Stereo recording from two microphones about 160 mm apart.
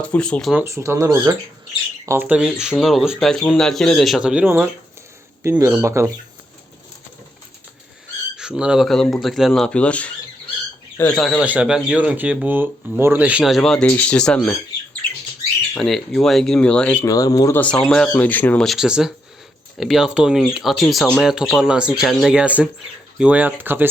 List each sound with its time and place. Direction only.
0.0 s speech: 5° left (ahead or behind)
0.5 s speech: 15° right (ahead or behind)
8.4 s speech: 5° right (ahead or behind); by 11.2 s 15° left (ahead or behind)
11.2 s speech: 5° right (ahead or behind)
15.7 s speech: centre (ahead or behind)
17.1 s speech: 20° left (ahead or behind)
17.6 s speech: 5° left (ahead or behind); by 23.9 s 10° right (ahead or behind)